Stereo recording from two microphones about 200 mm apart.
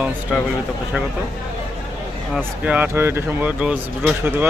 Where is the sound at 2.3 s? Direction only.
10° right (ahead or behind).